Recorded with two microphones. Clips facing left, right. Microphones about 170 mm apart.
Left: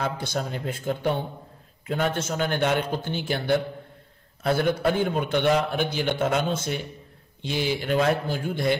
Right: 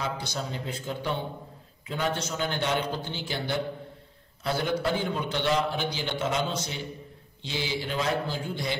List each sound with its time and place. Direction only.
0.0 s a man's voice: 55° left (ahead or behind)